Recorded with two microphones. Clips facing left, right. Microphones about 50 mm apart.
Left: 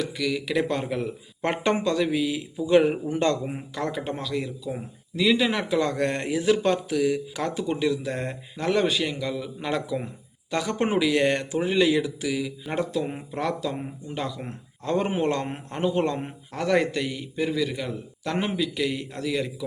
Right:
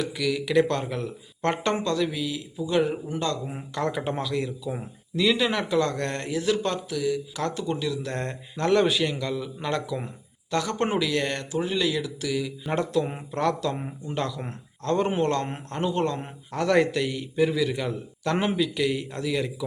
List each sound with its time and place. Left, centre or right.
0.0 s speech: centre; by 3.5 s left
3.5 s a man's voice: centre; by 6.7 s left
6.9 s speech: left
7.4 s speech: centre
12.3 s a man's voice: centre
13.7 s a man's voice: centre
16.5 s a man's voice: centre